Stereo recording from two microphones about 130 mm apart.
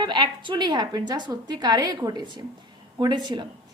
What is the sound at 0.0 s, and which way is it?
A woman's voice, 35° right (ahead or behind).